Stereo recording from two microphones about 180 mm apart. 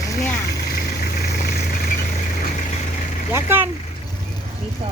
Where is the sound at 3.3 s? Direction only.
10° right (ahead or behind).